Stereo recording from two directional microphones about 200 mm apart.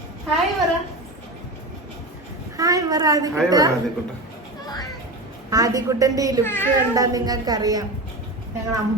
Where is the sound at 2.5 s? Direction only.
15° right (ahead or behind).